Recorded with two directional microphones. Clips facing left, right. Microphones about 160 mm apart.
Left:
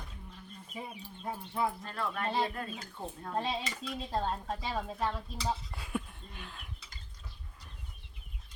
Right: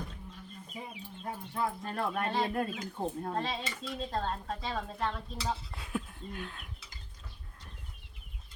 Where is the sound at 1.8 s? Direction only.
50° right (ahead or behind).